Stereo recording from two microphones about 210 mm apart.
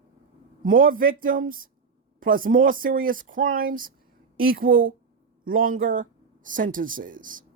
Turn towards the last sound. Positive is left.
turn(degrees=-40)  # may be behind; listen again after turning